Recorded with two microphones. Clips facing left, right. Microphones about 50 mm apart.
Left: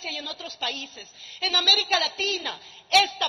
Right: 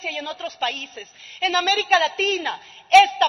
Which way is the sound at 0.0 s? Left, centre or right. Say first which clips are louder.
Right 6 dB; right.